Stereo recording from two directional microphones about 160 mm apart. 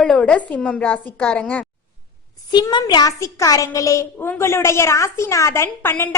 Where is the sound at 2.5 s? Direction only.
25° left (ahead or behind).